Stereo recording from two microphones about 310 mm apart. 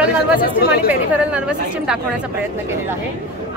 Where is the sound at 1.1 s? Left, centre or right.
Centre.